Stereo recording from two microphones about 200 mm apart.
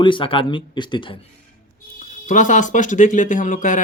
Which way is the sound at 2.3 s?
40° left (ahead or behind).